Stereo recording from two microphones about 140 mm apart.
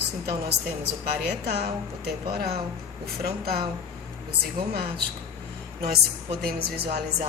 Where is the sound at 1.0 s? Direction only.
90° right.